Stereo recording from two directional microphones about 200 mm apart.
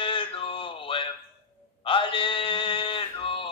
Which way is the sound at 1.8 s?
25° left (ahead or behind).